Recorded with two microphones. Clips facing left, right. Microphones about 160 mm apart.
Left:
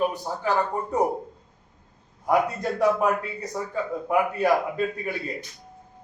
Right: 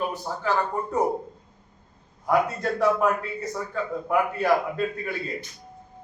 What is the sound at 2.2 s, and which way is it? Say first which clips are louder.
A man's voice: even; 15° left (ahead or behind).